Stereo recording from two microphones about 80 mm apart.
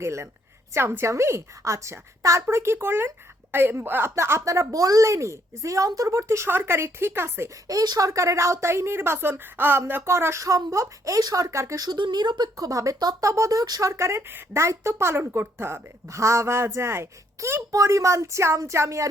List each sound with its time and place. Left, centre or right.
0.0 s speech: right
7.7 s speech: right
11.9 s speech: right